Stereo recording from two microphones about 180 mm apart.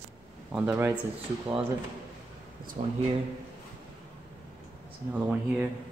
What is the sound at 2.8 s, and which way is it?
Speech, 35° right (ahead or behind).